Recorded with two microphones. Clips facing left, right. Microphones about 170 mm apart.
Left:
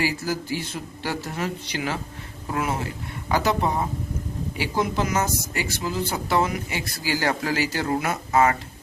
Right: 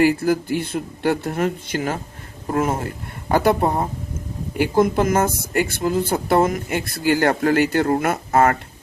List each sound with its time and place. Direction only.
0.0 s speech: 55° right (ahead or behind)